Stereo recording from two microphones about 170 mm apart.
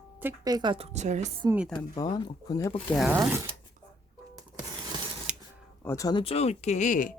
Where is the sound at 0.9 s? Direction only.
45° right (ahead or behind).